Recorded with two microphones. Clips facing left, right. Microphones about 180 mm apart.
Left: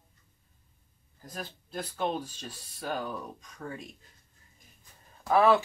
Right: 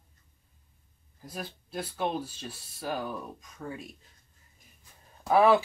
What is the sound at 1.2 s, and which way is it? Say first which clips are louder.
Speech: right 1 dB; 10° right (ahead or behind).